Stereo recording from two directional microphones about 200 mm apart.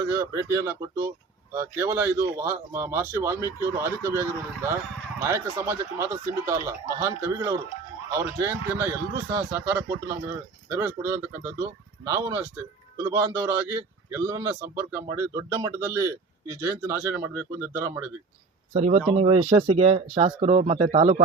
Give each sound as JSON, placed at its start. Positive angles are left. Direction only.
{"t": 0.1, "sound": "a man's voice", "side_deg": -15}
{"t": 18.7, "sound": "speech", "side_deg": -35}